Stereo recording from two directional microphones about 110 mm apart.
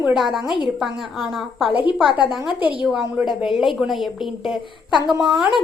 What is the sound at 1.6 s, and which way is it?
Speech, 50° left (ahead or behind).